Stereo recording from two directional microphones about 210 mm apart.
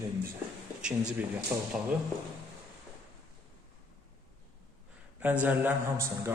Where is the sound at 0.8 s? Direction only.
5° right (ahead or behind).